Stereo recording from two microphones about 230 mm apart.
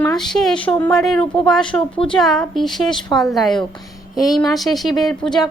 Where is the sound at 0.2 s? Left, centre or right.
Centre.